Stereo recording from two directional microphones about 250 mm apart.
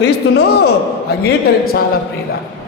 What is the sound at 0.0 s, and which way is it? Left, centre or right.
A man's voice, left.